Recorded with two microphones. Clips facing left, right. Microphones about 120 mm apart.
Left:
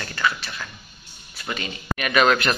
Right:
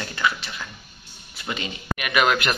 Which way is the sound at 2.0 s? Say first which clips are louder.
Left 2 dB; 10° right (ahead or behind).